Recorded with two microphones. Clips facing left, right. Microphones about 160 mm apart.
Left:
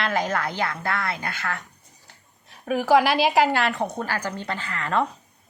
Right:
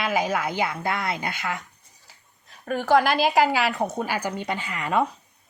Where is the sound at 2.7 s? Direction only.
5° left (ahead or behind).